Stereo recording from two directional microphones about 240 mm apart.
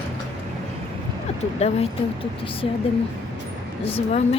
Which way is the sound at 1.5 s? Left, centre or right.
Left.